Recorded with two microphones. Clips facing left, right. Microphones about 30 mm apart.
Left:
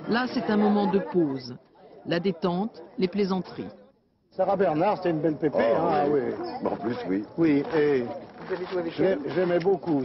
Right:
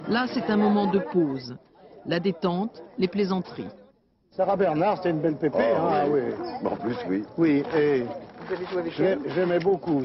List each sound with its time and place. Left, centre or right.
0.0 s a man's voice: centre